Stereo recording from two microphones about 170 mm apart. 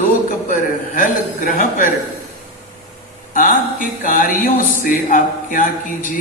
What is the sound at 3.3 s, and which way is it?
Speech, 55° left (ahead or behind).